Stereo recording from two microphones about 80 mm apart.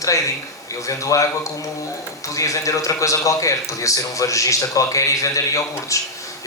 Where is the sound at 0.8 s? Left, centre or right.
Left.